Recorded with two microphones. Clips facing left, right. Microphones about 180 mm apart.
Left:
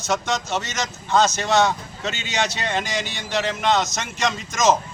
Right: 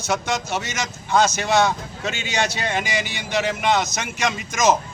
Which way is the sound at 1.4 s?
Centre (ahead or behind).